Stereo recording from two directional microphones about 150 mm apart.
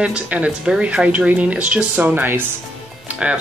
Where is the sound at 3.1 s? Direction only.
10° right (ahead or behind).